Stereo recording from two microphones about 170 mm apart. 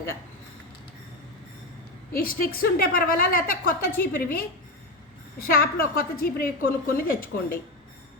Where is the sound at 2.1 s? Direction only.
60° left (ahead or behind).